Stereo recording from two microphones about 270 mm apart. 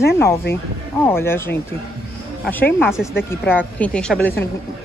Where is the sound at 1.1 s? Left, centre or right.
Centre.